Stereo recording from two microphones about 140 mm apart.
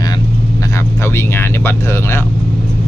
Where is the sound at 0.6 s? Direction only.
20° left (ahead or behind).